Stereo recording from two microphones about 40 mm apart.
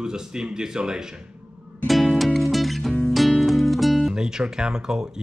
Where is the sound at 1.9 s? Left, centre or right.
Centre.